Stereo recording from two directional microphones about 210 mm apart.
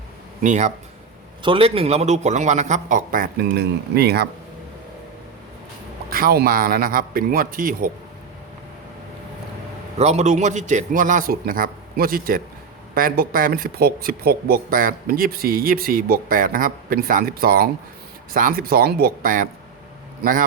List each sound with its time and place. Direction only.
0.4 s a man's voice: 35° right (ahead or behind)
6.1 s speech: 45° right (ahead or behind)
10.0 s a man's voice: 30° right (ahead or behind)